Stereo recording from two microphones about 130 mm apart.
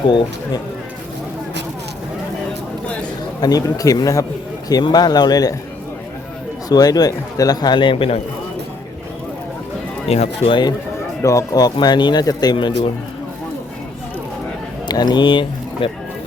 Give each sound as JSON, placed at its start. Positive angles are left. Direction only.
{"t": 3.4, "sound": "a man's voice", "side_deg": 30}
{"t": 6.7, "sound": "a man's voice", "side_deg": 30}
{"t": 10.1, "sound": "speech", "side_deg": 50}
{"t": 11.2, "sound": "a man's voice", "side_deg": 25}
{"t": 14.8, "sound": "speech", "side_deg": 30}